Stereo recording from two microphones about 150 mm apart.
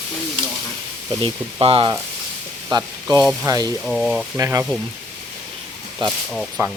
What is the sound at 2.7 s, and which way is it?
Frying, 25° right (ahead or behind).